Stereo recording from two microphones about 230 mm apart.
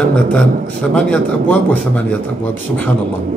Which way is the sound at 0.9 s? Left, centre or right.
Centre.